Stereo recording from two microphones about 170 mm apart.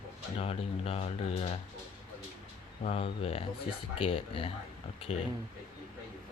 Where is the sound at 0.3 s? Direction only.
35° left (ahead or behind).